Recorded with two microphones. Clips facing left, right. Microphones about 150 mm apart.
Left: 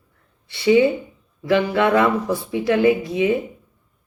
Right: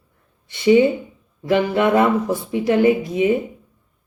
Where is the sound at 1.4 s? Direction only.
20° right (ahead or behind).